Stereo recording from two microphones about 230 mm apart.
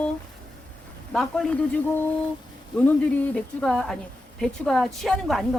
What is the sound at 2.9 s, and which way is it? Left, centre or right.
A woman's voice, centre.